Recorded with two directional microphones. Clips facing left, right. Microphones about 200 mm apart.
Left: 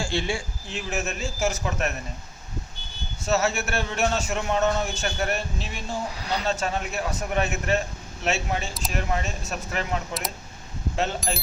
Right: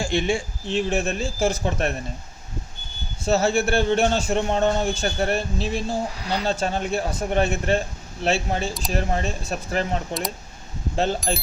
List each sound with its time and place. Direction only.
0.0 s a man's voice: 20° right (ahead or behind)
3.2 s a man's voice: 30° right (ahead or behind)